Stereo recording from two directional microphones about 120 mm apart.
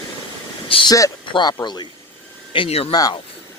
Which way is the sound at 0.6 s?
50° left (ahead or behind).